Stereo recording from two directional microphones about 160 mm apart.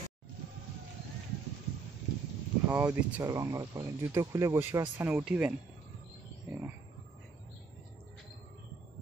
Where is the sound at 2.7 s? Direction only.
10° right (ahead or behind).